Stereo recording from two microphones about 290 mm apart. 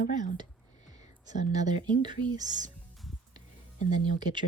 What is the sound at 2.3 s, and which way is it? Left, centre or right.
Speech, centre.